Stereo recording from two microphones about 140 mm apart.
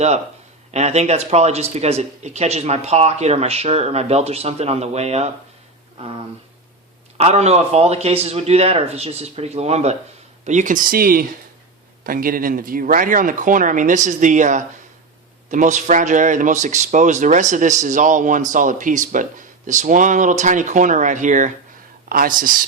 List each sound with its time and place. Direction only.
0.7 s speech: 50° right (ahead or behind)
7.2 s speech: 50° right (ahead or behind)
10.4 s speech: 60° right (ahead or behind)
22.1 s speech: 85° right